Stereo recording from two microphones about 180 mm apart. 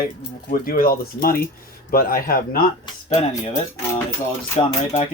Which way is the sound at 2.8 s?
30° left (ahead or behind).